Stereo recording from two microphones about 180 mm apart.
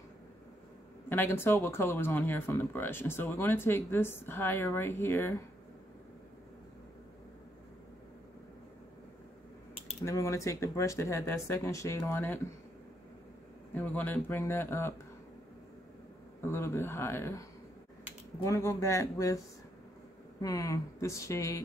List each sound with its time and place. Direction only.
1.0 s speech: 10° left (ahead or behind)
10.0 s speech: 15° left (ahead or behind)
13.7 s speech: 10° left (ahead or behind)
16.3 s speech: 15° left (ahead or behind)